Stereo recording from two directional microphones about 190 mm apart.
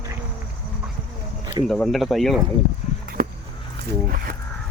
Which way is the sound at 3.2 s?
50° right (ahead or behind).